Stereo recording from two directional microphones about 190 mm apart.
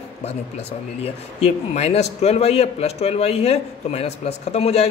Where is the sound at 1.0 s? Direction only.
35° left (ahead or behind).